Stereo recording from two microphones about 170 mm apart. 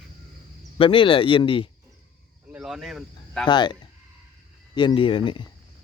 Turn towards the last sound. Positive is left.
turn(degrees=30)  # may be behind; listen again after turning